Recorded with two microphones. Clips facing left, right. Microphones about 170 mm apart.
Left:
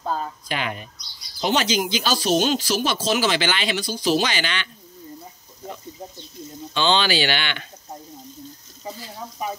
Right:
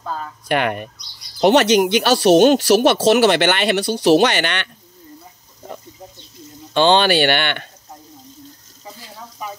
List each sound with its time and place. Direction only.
0.0 s a sound: 25° left (ahead or behind)
0.5 s speech: 60° right (ahead or behind)
6.7 s speech: 55° right (ahead or behind)